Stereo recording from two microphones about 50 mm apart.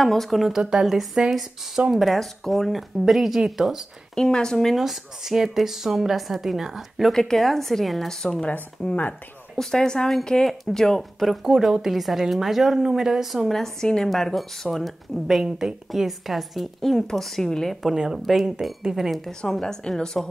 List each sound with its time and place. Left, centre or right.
0.0 s a woman's voice: centre
0.6 s a woman's voice: centre
0.8 s a woman's voice: centre
4.1 s speech: centre
4.7 s a woman's voice: centre
7.1 s a woman's voice: centre
8.2 s speech: centre
8.8 s speech: left
9.6 s speech: centre
11.4 s a woman's voice: centre
13.5 s a woman's voice: centre
15.2 s a woman's voice: centre
17.9 s a woman's voice: centre
19.5 s speech: centre